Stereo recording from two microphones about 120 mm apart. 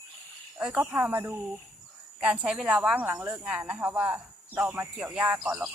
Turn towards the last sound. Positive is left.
turn(degrees=-10)  # may be behind; listen again after turning